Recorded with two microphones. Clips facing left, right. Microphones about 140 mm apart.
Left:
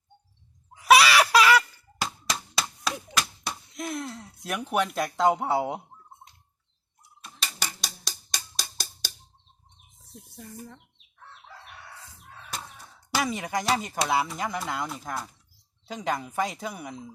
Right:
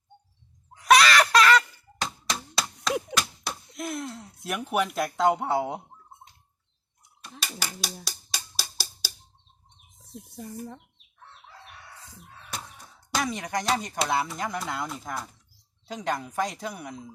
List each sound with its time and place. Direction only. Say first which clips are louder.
0.7 s a sound: even; 5° left (ahead or behind)
3.2 s speech: even; centre (ahead or behind)
7.2 s a sound: even; centre (ahead or behind)
8.0 s music: even; 5° right (ahead or behind)
10.3 s speech: right 5 dB; 20° right (ahead or behind)
13.1 s speech: left 1 dB; centre (ahead or behind)